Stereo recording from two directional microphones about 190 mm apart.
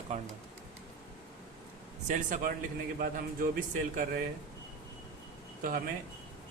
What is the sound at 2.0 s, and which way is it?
Speech, 40° right (ahead or behind).